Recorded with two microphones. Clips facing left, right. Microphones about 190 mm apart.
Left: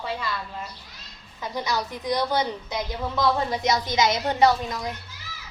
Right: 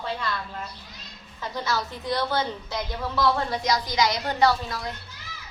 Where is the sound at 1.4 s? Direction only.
15° left (ahead or behind).